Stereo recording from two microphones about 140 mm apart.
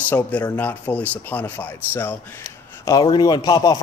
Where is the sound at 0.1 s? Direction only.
10° left (ahead or behind).